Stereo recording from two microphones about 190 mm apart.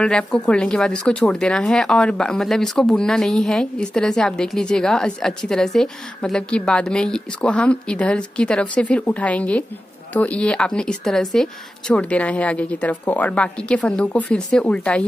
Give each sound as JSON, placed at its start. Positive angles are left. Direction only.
{"t": 0.0, "sound": "a woman's voice", "side_deg": 5}